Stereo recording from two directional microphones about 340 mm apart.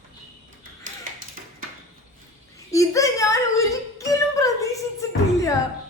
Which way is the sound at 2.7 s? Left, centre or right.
Centre.